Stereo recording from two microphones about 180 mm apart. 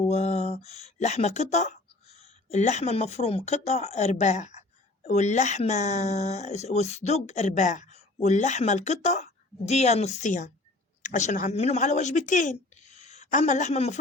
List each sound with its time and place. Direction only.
0.0 s speech: 35° left (ahead or behind)